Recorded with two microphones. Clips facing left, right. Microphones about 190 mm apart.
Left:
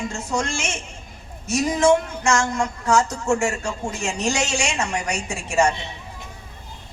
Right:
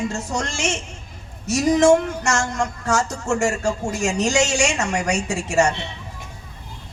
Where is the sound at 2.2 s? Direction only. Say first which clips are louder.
Left 1 dB; 40° right (ahead or behind).